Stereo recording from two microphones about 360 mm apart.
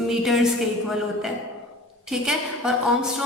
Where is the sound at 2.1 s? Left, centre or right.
Centre.